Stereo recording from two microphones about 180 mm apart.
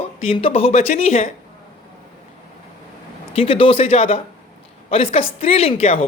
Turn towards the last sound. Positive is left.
turn(degrees=35)  # may be behind; listen again after turning